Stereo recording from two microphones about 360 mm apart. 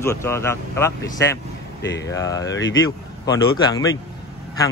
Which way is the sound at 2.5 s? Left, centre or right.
Left.